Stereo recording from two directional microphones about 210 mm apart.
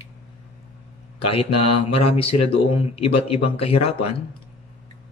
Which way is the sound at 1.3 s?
25° left (ahead or behind).